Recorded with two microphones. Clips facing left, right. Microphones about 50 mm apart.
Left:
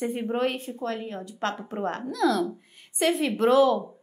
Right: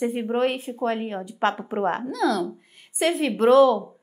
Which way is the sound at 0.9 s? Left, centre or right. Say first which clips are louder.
Right 5 dB; right.